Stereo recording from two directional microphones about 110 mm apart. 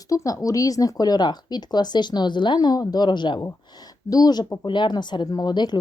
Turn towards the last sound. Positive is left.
turn(degrees=40)  # may be behind; listen again after turning